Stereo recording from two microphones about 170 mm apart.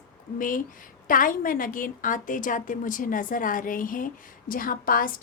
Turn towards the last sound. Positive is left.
turn(degrees=55)  # may be behind; listen again after turning